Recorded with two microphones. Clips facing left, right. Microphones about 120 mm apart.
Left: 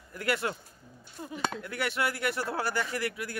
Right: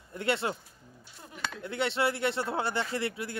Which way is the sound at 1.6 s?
25° right (ahead or behind).